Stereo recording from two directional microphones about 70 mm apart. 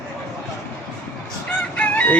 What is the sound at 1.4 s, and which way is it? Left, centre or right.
Crowing, left.